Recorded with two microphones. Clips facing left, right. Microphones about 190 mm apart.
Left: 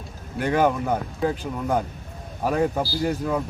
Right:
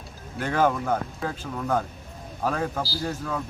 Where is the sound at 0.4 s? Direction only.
15° left (ahead or behind).